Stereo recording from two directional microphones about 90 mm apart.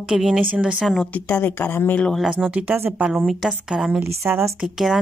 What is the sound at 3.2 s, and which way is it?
Speech, 5° right (ahead or behind).